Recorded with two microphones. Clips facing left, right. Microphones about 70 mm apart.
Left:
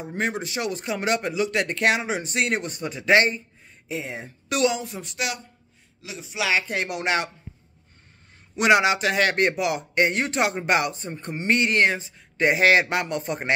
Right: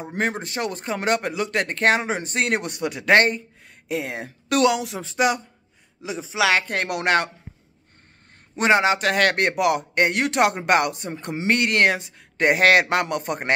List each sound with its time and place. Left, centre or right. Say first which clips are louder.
0.0 s speech: right 2 dB; right
3.6 s speech: right 5 dB; right
6.4 s speech: right 4 dB; right
8.5 s a man's voice: even; right